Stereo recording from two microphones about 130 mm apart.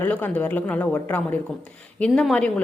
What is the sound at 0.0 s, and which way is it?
A woman's voice, 15° left (ahead or behind).